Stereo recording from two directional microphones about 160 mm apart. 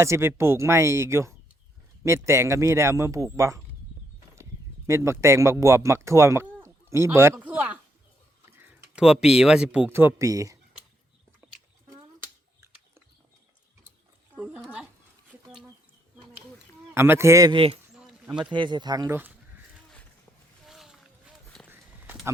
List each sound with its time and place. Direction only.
0.0 s speech: 15° right (ahead or behind)
4.9 s speech: 15° right (ahead or behind)
14.3 s dog: 5° right (ahead or behind)
16.9 s speech: 15° right (ahead or behind)
17.5 s speech: 35° right (ahead or behind)
17.9 s a sound: 5° right (ahead or behind)
18.4 s speech: 30° right (ahead or behind)
20.7 s a sound: centre (ahead or behind)
21.7 s walk: 15° right (ahead or behind)